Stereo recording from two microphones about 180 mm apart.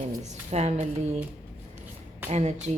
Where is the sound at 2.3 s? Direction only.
40° right (ahead or behind).